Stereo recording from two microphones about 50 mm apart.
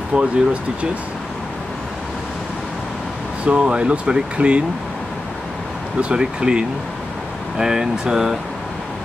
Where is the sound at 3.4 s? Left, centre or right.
Right.